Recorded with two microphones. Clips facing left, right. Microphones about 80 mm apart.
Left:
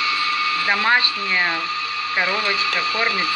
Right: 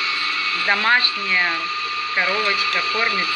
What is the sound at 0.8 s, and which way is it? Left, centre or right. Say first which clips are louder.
Speech: even; left.